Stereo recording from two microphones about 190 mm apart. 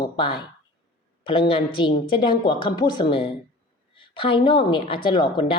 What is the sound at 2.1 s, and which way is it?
A woman's voice, 25° left (ahead or behind).